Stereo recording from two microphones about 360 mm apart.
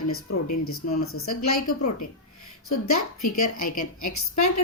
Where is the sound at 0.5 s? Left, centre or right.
Left.